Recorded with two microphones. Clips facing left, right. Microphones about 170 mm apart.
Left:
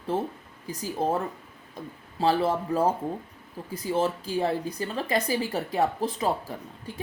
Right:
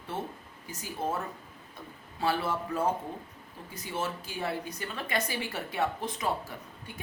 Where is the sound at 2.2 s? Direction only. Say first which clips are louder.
Left 6 dB; 30° left (ahead or behind).